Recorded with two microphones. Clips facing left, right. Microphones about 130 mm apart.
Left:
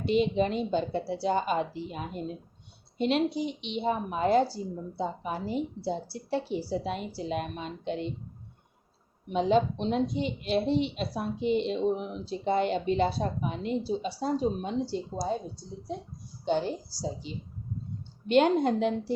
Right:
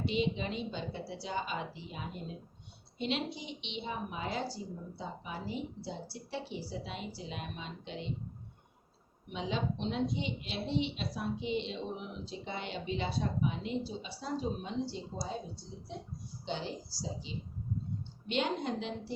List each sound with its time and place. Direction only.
0.0 s a woman's voice: 45° left (ahead or behind)
9.3 s a woman's voice: 45° left (ahead or behind)
16.5 s a woman's voice: 50° left (ahead or behind)